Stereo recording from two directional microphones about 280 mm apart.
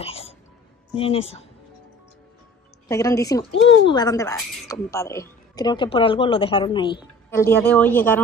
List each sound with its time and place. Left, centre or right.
0.0 s music: left
0.9 s speech: centre
2.9 s speech: centre